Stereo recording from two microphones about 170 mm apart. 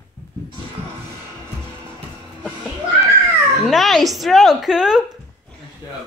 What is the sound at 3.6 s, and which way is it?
Speech, centre (ahead or behind).